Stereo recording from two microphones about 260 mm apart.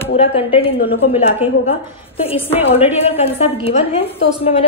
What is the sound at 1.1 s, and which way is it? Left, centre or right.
A woman's voice, left.